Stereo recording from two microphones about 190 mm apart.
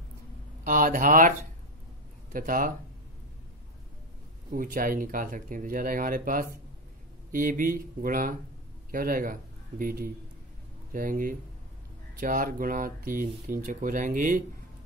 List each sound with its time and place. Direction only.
0.7 s speech: 45° right (ahead or behind)
2.3 s speech: 45° right (ahead or behind)
4.5 s speech: 45° right (ahead or behind)